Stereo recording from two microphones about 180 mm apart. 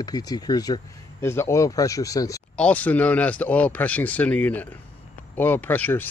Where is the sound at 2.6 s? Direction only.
10° left (ahead or behind).